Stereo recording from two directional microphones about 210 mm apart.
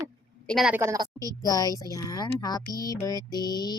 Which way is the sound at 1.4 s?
15° left (ahead or behind).